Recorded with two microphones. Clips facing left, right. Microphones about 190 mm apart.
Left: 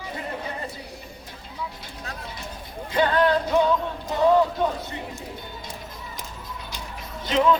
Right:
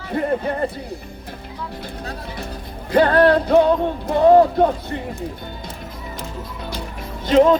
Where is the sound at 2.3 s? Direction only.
60° right (ahead or behind).